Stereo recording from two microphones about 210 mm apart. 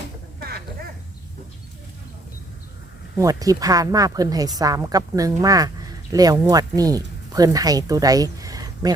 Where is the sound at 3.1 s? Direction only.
15° right (ahead or behind).